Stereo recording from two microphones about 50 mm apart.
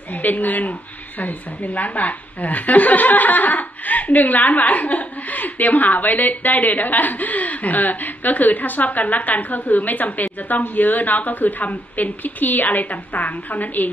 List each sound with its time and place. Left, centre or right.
0.1 s a woman's voice: left